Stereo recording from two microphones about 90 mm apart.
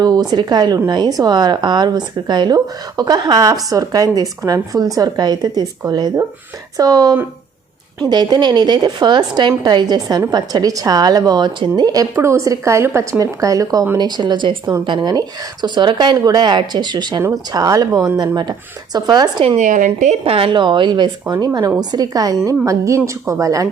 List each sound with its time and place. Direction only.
0.0 s speech: 50° right (ahead or behind)
6.7 s a woman's voice: 45° right (ahead or behind)
14.0 s speech: 55° right (ahead or behind)
20.2 s speech: 90° right; by 21.3 s 55° right (ahead or behind)
21.4 s a woman's voice: 45° right (ahead or behind)